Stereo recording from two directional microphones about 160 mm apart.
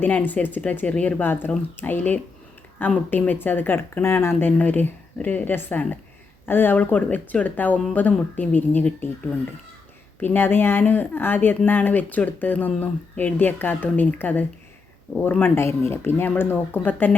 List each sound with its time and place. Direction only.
0.0 s speech: 10° left (ahead or behind)